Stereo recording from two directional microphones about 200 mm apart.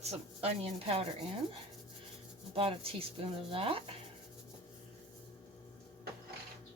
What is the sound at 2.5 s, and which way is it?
Speech, 30° right (ahead or behind).